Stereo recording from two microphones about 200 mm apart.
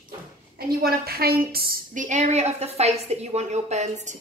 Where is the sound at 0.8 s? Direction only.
50° right (ahead or behind).